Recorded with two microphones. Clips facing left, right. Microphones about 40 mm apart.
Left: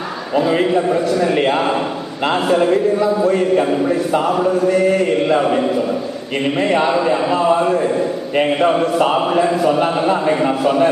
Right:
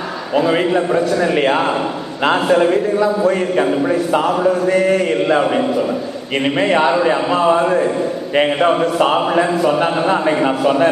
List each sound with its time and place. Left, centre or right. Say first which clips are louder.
0.4 s a man's voice: even; centre
3.3 s a man's voice: left 1 dB; right
6.3 s a man's voice: right 1 dB; right